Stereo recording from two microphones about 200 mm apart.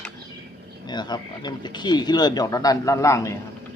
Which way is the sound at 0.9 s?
20° left (ahead or behind).